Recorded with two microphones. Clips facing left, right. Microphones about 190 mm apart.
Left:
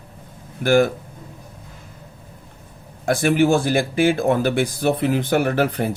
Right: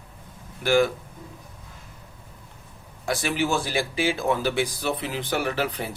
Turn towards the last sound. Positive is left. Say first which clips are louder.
# left 7 dB
turn(degrees=50)  # may be behind; listen again after turning